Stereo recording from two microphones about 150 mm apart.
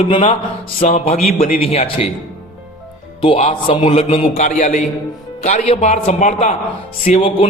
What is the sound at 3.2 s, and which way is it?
A man's voice, 40° left (ahead or behind).